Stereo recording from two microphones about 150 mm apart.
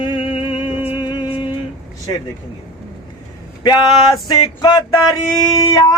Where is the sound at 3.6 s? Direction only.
30° left (ahead or behind).